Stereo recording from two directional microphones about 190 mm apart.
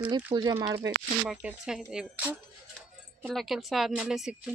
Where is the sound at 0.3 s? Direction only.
20° right (ahead or behind).